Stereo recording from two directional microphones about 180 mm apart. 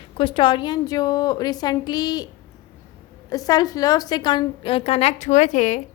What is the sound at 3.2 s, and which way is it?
A woman's voice, 20° left (ahead or behind).